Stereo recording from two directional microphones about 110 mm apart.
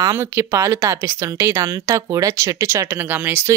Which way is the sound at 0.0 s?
25° right (ahead or behind).